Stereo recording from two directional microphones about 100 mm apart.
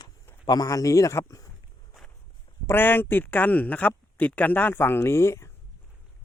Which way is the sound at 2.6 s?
20° left (ahead or behind).